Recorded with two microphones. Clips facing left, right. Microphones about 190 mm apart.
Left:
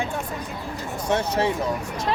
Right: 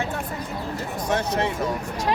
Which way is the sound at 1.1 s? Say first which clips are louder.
Left 2 dB; 30° left (ahead or behind).